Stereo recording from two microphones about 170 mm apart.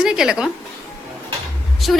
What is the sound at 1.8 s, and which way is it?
Speech, centre (ahead or behind).